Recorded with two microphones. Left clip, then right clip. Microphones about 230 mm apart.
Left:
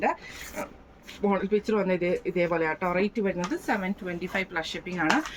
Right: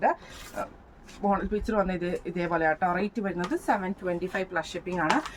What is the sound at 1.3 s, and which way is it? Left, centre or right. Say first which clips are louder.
Speech: left 2 dB; right.